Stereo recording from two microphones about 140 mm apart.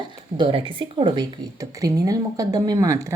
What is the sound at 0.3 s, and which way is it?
Speech, 35° right (ahead or behind).